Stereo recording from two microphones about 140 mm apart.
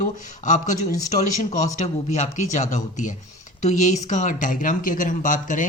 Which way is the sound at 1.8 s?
55° left (ahead or behind).